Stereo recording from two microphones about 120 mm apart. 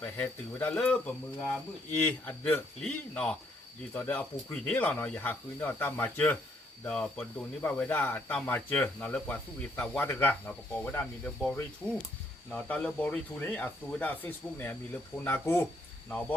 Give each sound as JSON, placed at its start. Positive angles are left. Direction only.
{"t": 0.0, "sound": "speech", "side_deg": 10}
{"t": 2.0, "sound": "speech", "side_deg": 15}
{"t": 11.8, "sound": "speech", "side_deg": 35}
{"t": 12.5, "sound": "speech", "side_deg": 10}